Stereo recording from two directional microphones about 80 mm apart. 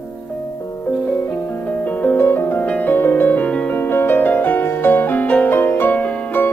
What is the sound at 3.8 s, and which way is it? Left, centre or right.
Music, left.